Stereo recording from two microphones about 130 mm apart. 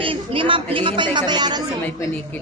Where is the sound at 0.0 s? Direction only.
40° right (ahead or behind).